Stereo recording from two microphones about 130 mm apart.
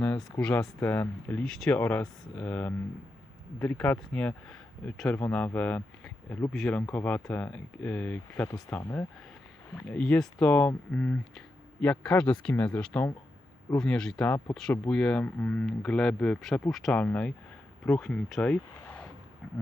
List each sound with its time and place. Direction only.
0.2 s speech: 5° left (ahead or behind)
0.6 s speech: 20° left (ahead or behind)
1.5 s speech: 5° left (ahead or behind)
1.8 s speech: 15° left (ahead or behind)
6.7 s speech: 15° left (ahead or behind)
9.9 s speech: 5° left (ahead or behind)
14.3 s speech: 20° left (ahead or behind)
14.7 s speech: 5° left (ahead or behind)